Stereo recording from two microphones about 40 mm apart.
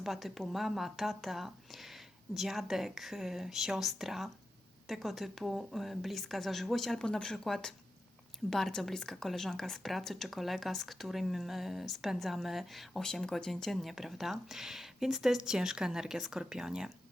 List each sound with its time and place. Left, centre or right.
0.0 s speech: centre
7.0 s speech: centre
13.3 s speech: centre
13.7 s speech: centre